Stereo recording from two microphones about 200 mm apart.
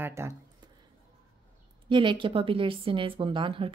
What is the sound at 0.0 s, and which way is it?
Speech, 15° right (ahead or behind).